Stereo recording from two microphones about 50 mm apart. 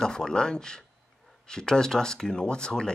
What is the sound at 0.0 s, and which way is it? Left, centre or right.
Speech, centre.